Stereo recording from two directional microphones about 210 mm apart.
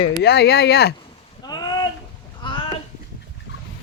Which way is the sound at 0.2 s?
50° left (ahead or behind).